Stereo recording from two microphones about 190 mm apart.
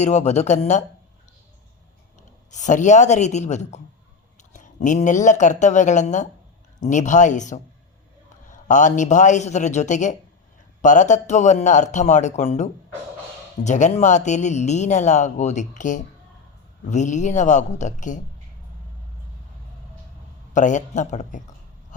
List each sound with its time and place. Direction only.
0.0 s speech: 35° left (ahead or behind)
2.5 s speech: 40° left (ahead or behind)
8.6 s speech: 40° left (ahead or behind)
13.7 s speech: 40° left (ahead or behind)
20.5 s speech: 40° left (ahead or behind)